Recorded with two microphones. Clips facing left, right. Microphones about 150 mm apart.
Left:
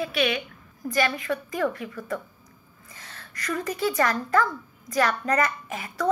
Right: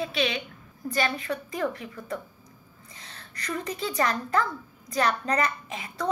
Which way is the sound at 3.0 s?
30° right (ahead or behind).